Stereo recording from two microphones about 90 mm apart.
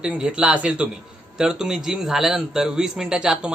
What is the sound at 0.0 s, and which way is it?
A man's voice, 10° right (ahead or behind).